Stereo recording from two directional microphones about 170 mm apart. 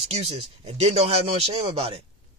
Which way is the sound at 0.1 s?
40° right (ahead or behind).